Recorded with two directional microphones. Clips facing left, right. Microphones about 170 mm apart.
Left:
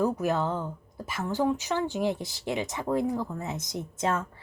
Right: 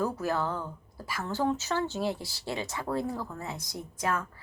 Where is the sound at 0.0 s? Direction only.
20° left (ahead or behind).